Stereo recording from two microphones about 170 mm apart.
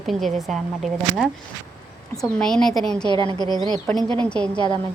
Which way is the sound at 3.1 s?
25° left (ahead or behind).